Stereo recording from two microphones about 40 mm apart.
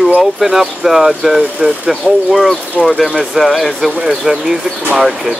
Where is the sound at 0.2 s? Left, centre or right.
Centre.